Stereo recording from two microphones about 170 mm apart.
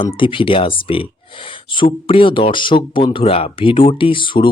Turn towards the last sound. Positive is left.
turn(degrees=30)  # may be behind; listen again after turning